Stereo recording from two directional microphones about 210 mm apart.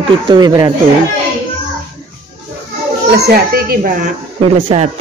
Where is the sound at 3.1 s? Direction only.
45° right (ahead or behind).